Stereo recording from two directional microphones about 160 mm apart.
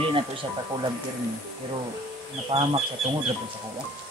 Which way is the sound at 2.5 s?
35° right (ahead or behind).